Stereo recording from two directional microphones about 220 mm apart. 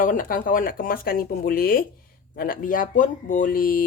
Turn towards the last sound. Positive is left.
turn(degrees=40)  # may be behind; listen again after turning